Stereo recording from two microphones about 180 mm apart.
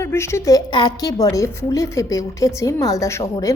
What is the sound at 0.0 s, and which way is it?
A woman's voice, 15° left (ahead or behind).